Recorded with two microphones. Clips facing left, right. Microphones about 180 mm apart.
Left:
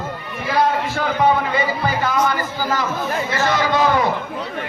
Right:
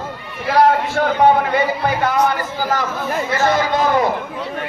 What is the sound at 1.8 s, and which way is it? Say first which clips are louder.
Speech: right 2 dB; 60° right (ahead or behind).